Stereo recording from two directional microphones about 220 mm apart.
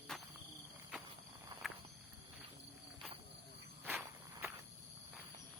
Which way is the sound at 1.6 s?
Centre (ahead or behind).